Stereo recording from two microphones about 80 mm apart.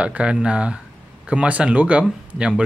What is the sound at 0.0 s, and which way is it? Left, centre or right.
Speech, centre.